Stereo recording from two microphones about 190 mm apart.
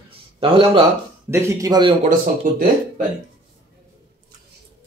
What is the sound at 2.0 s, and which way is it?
Speech, 40° right (ahead or behind).